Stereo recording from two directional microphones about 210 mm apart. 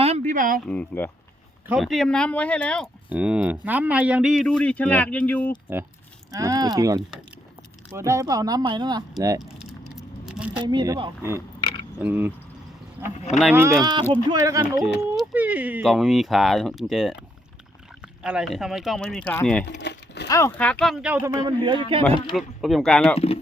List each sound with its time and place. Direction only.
0.0 s a sound: 30° right (ahead or behind)
0.6 s speech: 5° left (ahead or behind)
1.6 s speech: 5° right (ahead or behind)
3.1 s speech: 5° right (ahead or behind)
6.3 s speech: 15° right (ahead or behind)
9.9 s vehicle: centre (ahead or behind)
10.6 s speech: 20° right (ahead or behind)
13.5 s speech: 15° right (ahead or behind)
15.1 s speech: 5° right (ahead or behind)
19.8 s a sound: 55° left (ahead or behind)
20.2 s speech: 15° left (ahead or behind)
20.6 s speech: 5° left (ahead or behind); by 21.8 s 20° right (ahead or behind)
22.4 s speech: centre (ahead or behind)
23.1 s speech: 30° left (ahead or behind)